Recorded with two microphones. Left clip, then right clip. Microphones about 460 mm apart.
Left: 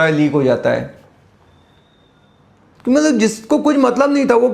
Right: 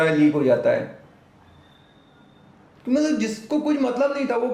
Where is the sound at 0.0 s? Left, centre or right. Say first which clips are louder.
Left 5 dB; left.